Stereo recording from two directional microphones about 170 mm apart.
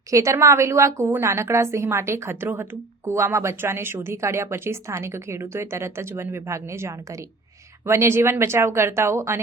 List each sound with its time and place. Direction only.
0.1 s a woman's voice: 20° right (ahead or behind)